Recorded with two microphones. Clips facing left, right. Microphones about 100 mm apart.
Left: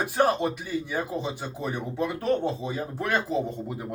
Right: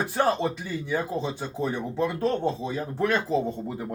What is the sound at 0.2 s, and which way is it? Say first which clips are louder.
A man's voice: left 1 dB; 15° left (ahead or behind).